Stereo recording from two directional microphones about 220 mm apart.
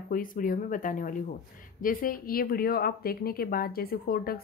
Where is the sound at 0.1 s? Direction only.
40° left (ahead or behind).